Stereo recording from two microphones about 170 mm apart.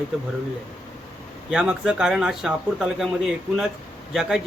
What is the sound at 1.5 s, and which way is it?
Speech, 5° right (ahead or behind).